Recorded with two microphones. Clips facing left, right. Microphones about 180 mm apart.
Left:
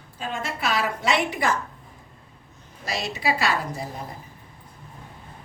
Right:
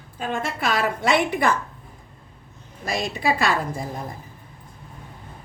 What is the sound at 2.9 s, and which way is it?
Speech, 50° right (ahead or behind).